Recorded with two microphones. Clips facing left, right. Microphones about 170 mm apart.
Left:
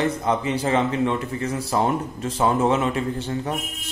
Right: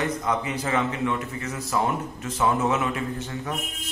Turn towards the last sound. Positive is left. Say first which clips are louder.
# left 5 dB
turn(degrees=30)  # may be behind; listen again after turning